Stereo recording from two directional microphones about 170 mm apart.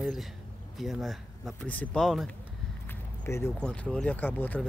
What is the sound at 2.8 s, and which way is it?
Speech, 10° left (ahead or behind).